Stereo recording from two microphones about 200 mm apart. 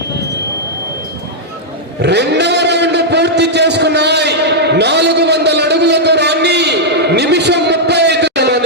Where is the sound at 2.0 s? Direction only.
55° right (ahead or behind).